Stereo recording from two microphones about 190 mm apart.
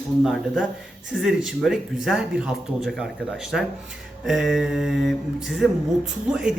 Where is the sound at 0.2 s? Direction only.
Centre (ahead or behind).